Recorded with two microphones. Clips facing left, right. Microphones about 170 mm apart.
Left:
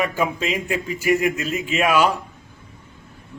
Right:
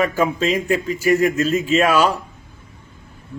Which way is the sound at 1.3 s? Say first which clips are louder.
Right 7 dB; 15° left (ahead or behind).